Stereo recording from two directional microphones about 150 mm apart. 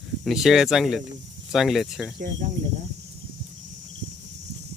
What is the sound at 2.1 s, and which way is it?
Speech, 70° right (ahead or behind).